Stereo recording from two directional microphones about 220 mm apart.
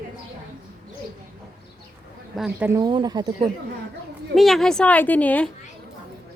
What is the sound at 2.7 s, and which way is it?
Speech, 20° right (ahead or behind).